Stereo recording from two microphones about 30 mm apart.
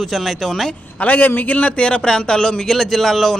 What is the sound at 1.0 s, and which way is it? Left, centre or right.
Speech, left.